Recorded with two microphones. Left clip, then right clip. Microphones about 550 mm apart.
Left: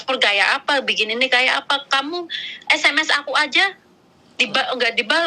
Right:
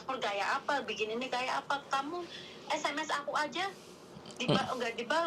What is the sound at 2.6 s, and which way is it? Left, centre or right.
A woman's voice, left.